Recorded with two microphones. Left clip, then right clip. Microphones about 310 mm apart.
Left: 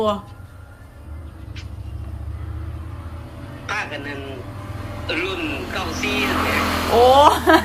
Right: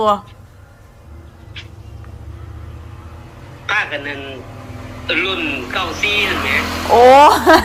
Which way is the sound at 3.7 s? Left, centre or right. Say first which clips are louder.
Right 8 dB; centre.